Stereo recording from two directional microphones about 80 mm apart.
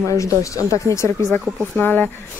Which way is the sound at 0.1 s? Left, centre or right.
Left.